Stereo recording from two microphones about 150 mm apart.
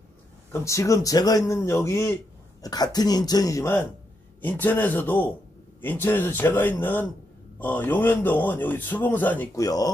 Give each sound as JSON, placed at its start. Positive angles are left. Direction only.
{"t": 0.5, "sound": "a man's voice", "side_deg": 20}
{"t": 9.6, "sound": "speech", "side_deg": 25}